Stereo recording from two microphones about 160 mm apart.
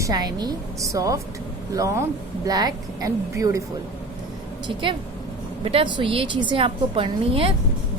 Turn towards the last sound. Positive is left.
turn(degrees=-35)  # may be behind; listen again after turning